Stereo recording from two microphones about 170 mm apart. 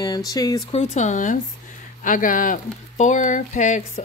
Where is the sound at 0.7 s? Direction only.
40° left (ahead or behind).